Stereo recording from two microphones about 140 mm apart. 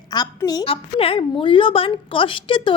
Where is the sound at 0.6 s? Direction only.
40° left (ahead or behind).